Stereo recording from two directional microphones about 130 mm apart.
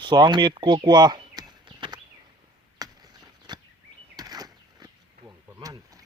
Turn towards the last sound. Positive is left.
turn(degrees=-30)  # may be behind; listen again after turning